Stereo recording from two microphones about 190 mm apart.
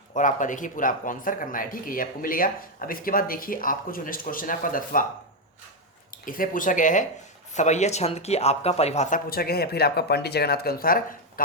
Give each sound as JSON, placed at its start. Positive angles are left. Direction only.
{"t": 0.1, "sound": "speech", "side_deg": 40}
{"t": 6.1, "sound": "speech", "side_deg": 45}